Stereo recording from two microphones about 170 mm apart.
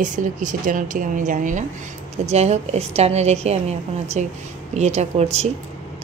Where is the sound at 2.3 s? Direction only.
40° right (ahead or behind).